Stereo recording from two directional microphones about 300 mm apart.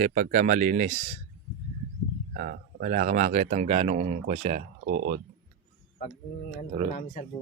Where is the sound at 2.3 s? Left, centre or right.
Right.